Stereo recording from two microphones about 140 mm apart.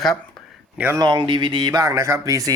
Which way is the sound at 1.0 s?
35° right (ahead or behind).